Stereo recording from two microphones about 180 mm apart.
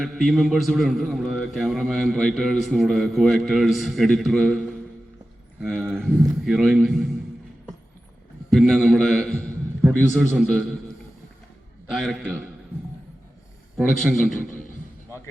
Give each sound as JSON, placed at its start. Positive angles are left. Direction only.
{"t": 0.0, "sound": "a man's voice", "side_deg": 0}
{"t": 8.5, "sound": "a man's voice", "side_deg": 0}
{"t": 9.4, "sound": "a sound", "side_deg": 10}
{"t": 10.2, "sound": "a man's voice", "side_deg": -5}
{"t": 11.9, "sound": "a man's voice", "side_deg": -5}